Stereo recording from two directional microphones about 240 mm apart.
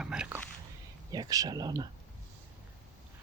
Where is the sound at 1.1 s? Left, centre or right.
Centre.